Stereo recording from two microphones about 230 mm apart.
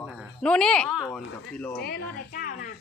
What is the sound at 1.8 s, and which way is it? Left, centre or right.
Speech, left.